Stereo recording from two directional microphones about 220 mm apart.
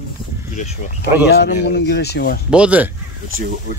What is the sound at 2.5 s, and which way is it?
Speech, 5° right (ahead or behind).